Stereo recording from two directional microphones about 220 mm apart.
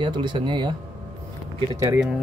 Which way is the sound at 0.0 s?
20° right (ahead or behind).